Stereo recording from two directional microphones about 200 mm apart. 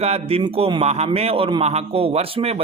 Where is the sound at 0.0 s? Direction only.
30° right (ahead or behind).